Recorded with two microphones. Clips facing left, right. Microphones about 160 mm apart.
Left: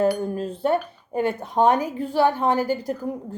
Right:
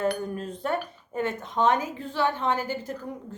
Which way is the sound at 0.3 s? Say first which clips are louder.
Left 7 dB; 30° left (ahead or behind).